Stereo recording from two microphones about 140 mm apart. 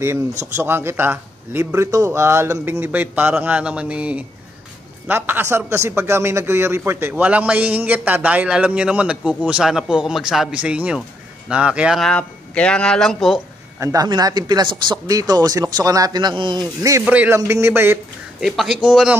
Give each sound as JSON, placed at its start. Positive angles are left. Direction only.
{"t": 0.4, "sound": "a man's voice", "side_deg": -20}
{"t": 12.1, "sound": "speech", "side_deg": 10}
{"t": 13.7, "sound": "speech", "side_deg": -25}
{"t": 17.0, "sound": "a man's voice", "side_deg": -10}
{"t": 18.4, "sound": "speech", "side_deg": -5}